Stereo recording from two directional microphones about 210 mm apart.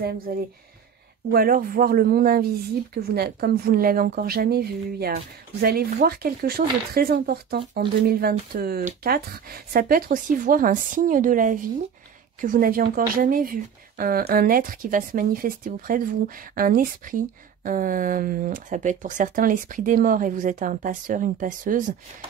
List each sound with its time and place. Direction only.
1.3 s speech: 45° right (ahead or behind)